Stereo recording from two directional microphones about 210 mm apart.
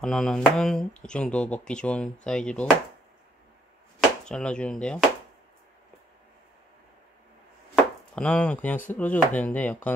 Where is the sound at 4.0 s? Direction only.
5° left (ahead or behind).